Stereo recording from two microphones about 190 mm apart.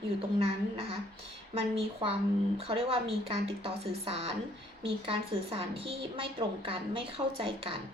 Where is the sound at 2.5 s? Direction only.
30° right (ahead or behind).